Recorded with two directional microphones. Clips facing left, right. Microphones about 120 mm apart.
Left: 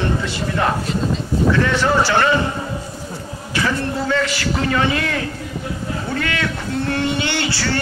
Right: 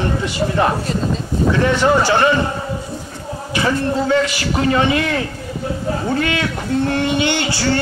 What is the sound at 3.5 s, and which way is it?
Speech, 20° right (ahead or behind).